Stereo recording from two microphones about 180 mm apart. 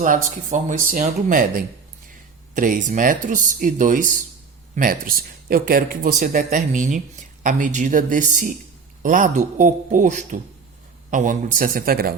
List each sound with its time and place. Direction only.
0.0 s speech: 45° right (ahead or behind)